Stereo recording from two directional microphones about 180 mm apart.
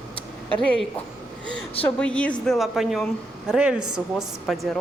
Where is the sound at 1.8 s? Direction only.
5° left (ahead or behind).